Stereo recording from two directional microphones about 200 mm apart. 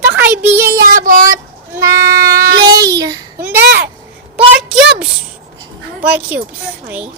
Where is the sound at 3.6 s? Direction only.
55° right (ahead or behind).